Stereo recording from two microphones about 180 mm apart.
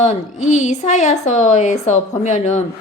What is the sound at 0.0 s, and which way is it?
A woman's voice, 40° left (ahead or behind).